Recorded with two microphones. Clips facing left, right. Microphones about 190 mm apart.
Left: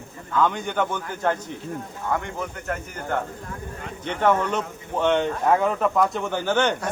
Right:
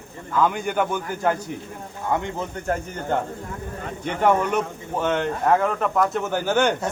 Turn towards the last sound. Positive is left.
turn(degrees=-10)  # may be behind; listen again after turning